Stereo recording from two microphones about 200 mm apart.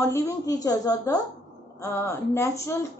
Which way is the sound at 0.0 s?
15° left (ahead or behind).